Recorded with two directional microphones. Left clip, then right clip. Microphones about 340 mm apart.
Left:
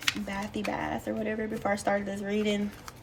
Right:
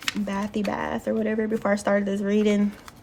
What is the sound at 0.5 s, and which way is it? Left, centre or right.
Speech, centre.